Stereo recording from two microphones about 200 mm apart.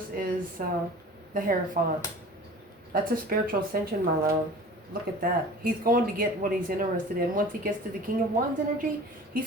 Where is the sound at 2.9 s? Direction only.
45° right (ahead or behind).